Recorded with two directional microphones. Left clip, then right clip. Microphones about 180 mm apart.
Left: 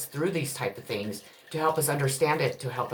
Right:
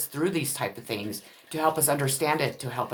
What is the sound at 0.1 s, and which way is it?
Speech, 40° right (ahead or behind).